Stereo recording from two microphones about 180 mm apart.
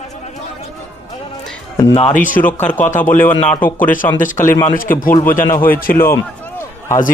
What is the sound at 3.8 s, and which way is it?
A man's voice, 50° left (ahead or behind).